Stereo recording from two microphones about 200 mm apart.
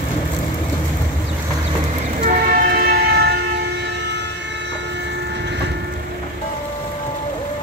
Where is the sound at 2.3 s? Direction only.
45° right (ahead or behind).